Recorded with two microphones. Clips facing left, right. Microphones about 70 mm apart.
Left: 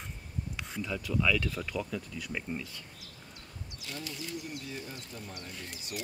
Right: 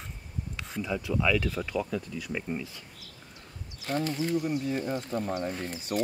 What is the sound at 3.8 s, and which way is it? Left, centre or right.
Speech, right.